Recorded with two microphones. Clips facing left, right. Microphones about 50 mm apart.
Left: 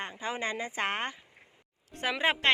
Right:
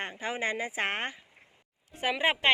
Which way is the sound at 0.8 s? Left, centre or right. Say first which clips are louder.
Left 3 dB; right.